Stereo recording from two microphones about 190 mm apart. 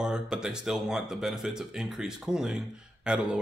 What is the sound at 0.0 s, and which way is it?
Speech, 5° right (ahead or behind).